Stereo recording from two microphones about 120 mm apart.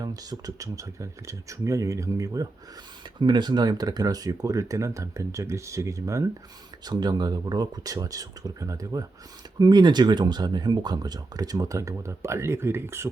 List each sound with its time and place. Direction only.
0.0 s speech: 30° right (ahead or behind)